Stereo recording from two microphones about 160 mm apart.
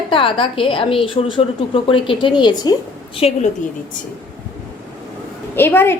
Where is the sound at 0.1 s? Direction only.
35° left (ahead or behind).